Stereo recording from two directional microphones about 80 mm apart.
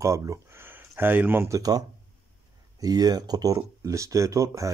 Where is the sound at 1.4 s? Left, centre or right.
Right.